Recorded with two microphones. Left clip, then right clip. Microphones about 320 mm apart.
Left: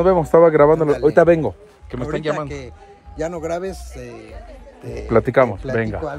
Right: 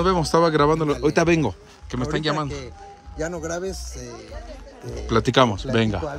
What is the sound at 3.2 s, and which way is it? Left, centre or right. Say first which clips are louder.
Speech: left 4 dB; left.